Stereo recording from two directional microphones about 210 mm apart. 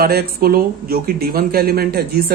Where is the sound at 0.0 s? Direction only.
45° right (ahead or behind).